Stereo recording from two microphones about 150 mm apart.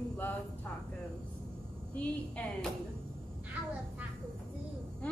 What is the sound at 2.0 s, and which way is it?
Speech, 5° left (ahead or behind).